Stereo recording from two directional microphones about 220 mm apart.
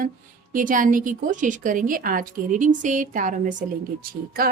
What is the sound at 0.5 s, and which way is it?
A woman's voice, 35° right (ahead or behind).